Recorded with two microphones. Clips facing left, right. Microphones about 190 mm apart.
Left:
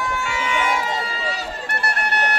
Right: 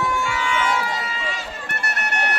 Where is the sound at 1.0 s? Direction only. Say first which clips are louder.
Left 2 dB; 35° left (ahead or behind).